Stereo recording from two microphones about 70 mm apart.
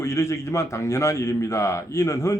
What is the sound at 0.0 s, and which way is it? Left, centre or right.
Speech, left.